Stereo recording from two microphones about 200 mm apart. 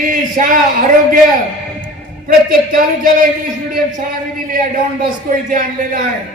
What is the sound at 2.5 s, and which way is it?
A man's voice, 45° right (ahead or behind).